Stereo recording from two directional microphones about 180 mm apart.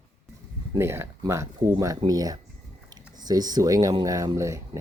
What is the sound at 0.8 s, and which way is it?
Speech, 15° right (ahead or behind).